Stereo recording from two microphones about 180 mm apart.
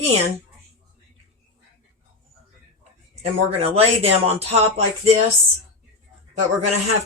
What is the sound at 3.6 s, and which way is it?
Speech, 35° right (ahead or behind).